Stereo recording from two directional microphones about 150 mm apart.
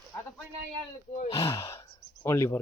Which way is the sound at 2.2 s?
20° left (ahead or behind).